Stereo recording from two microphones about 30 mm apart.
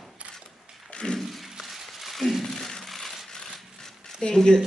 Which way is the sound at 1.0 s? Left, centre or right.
Left.